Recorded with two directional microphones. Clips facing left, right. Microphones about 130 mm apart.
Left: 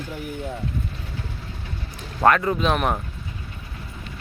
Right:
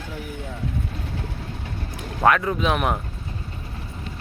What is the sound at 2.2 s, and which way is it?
Speech, centre (ahead or behind).